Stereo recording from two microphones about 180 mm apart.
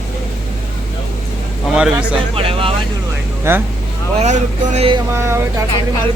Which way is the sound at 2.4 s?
30° right (ahead or behind).